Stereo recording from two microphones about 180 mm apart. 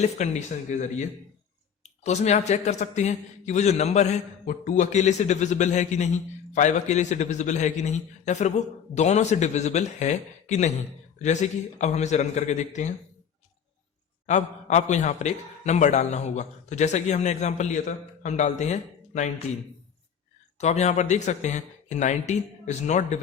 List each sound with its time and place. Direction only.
0.0 s a man's voice: 40° left (ahead or behind)
14.3 s a man's voice: 40° left (ahead or behind)
20.6 s a man's voice: 40° left (ahead or behind)